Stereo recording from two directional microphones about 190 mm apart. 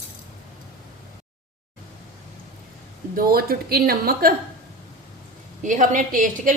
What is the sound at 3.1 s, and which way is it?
Speech, 50° right (ahead or behind).